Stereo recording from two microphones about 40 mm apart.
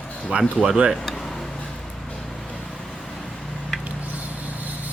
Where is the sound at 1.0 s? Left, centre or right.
Centre.